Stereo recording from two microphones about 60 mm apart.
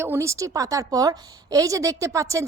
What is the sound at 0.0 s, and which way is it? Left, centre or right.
A woman's voice, right.